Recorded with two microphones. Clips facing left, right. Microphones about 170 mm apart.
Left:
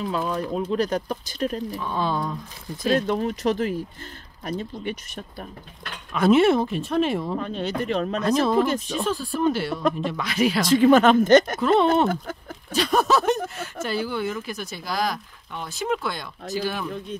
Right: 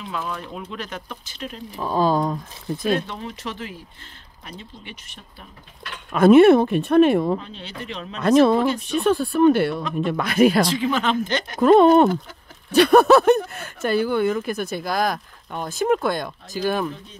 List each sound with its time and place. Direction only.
0.0 s speech: 35° left (ahead or behind)
1.8 s speech: 40° right (ahead or behind)
3.1 s speech: 45° left (ahead or behind)
6.1 s speech: 55° right (ahead or behind)
7.3 s speech: 50° left (ahead or behind)
8.2 s speech: 65° right (ahead or behind)
10.7 s speech: 50° left (ahead or behind)
11.6 s speech: 45° right (ahead or behind)
12.7 s speech: 60° right (ahead or behind)